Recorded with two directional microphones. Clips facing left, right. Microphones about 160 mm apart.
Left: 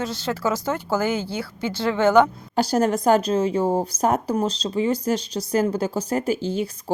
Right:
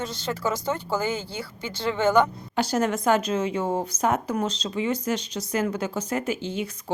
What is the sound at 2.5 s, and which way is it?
A woman's voice, 35° left (ahead or behind).